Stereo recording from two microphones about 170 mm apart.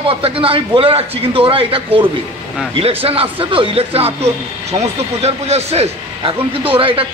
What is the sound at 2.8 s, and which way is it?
Speech, 35° right (ahead or behind).